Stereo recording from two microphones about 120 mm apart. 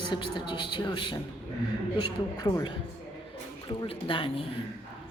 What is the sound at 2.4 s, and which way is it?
Speech, 35° left (ahead or behind).